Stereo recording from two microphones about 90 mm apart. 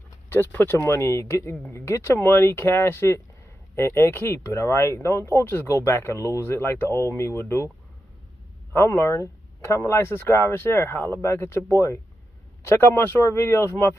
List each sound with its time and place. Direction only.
0.3 s speech: 25° left (ahead or behind)
8.7 s speech: 35° left (ahead or behind)